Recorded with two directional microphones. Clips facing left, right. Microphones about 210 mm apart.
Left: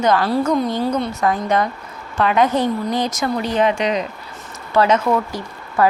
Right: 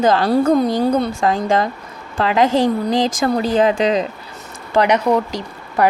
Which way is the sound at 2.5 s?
90° right.